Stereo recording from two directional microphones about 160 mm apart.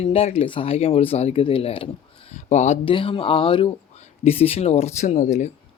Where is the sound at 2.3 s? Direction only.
45° left (ahead or behind).